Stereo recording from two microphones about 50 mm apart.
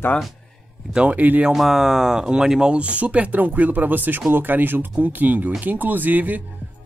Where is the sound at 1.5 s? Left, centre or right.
Centre.